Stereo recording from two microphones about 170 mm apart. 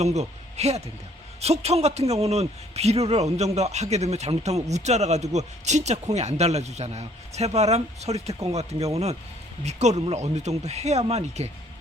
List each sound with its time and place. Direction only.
0.0 s a man's voice: 40° right (ahead or behind)